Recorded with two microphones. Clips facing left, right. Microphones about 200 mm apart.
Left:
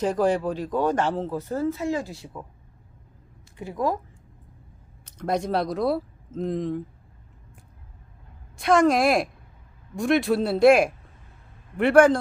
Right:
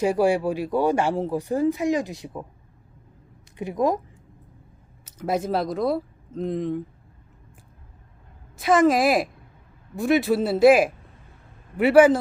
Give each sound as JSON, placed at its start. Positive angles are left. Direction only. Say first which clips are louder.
{"t": 0.0, "sound": "speech", "louder": "right 2 dB", "side_deg": -10}
{"t": 3.6, "sound": "speech", "louder": "right 4 dB", "side_deg": -20}
{"t": 5.0, "sound": "speech", "louder": "right 1 dB", "side_deg": -5}
{"t": 8.5, "sound": "a man's voice", "louder": "right 1 dB", "side_deg": 0}